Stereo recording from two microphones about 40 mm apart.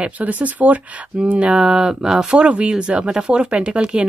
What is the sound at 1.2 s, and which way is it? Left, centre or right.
Speech, right.